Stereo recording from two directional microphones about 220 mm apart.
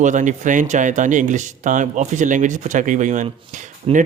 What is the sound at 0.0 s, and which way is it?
Speech, 35° right (ahead or behind).